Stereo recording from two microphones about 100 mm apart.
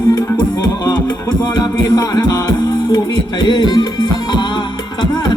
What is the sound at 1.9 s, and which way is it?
Music, 40° left (ahead or behind).